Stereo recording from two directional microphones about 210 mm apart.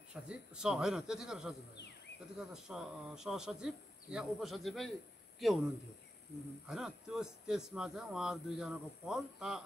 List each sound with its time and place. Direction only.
0.1 s speech: 5° right (ahead or behind)
6.7 s speech: centre (ahead or behind)